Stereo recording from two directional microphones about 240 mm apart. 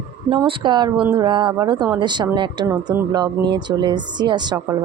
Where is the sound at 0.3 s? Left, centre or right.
Right.